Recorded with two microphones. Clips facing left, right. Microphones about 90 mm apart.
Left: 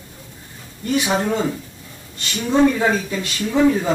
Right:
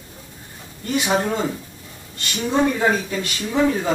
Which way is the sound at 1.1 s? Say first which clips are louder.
Right 2 dB; 10° right (ahead or behind).